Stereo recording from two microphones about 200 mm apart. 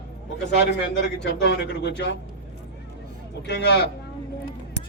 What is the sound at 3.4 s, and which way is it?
Speech, 55° left (ahead or behind).